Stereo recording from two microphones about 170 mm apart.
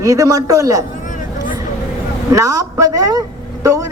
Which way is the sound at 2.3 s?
20° right (ahead or behind).